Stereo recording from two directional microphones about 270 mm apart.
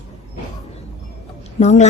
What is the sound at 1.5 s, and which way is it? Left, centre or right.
Speech, left.